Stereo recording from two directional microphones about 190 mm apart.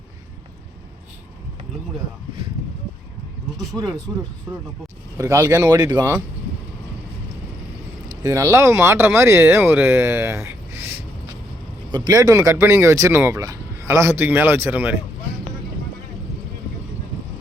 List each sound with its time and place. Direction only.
3.7 s speech: centre (ahead or behind)
5.1 s speech: 15° right (ahead or behind)
8.2 s speech: 15° right (ahead or behind)
11.9 s speech: 20° right (ahead or behind)